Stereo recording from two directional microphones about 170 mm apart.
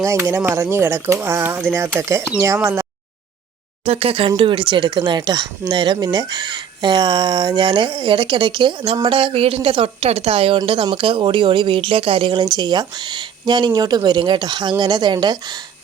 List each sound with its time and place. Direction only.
0.0 s speech: 15° right (ahead or behind)
3.8 s speech: 35° right (ahead or behind)